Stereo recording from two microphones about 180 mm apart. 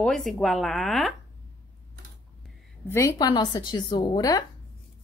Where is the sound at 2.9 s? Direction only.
20° left (ahead or behind).